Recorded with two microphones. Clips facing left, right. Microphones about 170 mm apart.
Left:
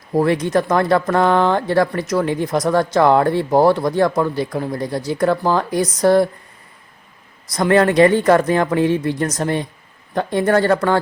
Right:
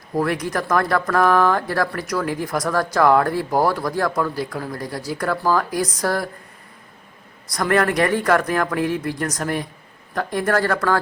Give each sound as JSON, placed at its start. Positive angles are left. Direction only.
{"t": 0.1, "sound": "speech", "side_deg": 25}
{"t": 7.5, "sound": "speech", "side_deg": 25}